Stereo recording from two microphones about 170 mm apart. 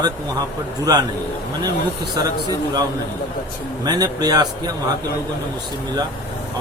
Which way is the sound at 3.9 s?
25° right (ahead or behind).